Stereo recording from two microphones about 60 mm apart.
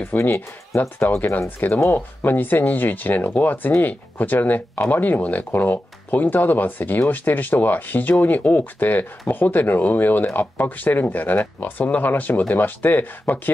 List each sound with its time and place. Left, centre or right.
0.2 s speech: left